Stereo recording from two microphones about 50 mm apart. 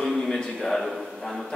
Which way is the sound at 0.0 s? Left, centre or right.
Centre.